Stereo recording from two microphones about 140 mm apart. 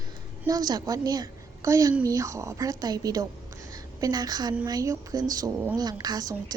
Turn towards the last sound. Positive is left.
turn(degrees=-30)  # may be behind; listen again after turning